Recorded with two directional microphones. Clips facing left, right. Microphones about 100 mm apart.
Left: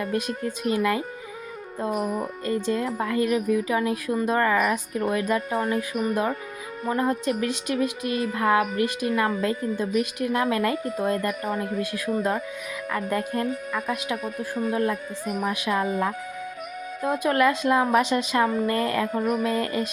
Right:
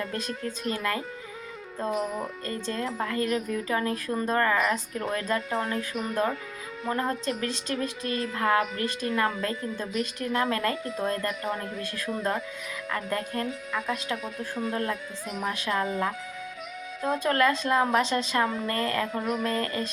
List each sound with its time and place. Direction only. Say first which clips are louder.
0.0 s speech: left 5 dB; 15° left (ahead or behind)
14.3 s speech: left 4 dB; 45° left (ahead or behind)
14.7 s speech: left 7 dB; 15° left (ahead or behind)
19.1 s speech: left 5 dB; 50° left (ahead or behind)
19.4 s speech: left 4 dB; 15° left (ahead or behind)